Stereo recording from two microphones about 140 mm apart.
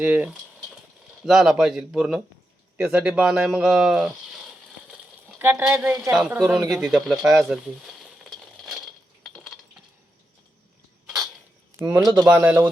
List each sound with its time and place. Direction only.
0.0 s speech: 10° right (ahead or behind)
5.4 s speech: 15° right (ahead or behind)
6.7 s a sound: 5° right (ahead or behind)
11.8 s speech: 20° right (ahead or behind)
12.3 s speech: 15° right (ahead or behind)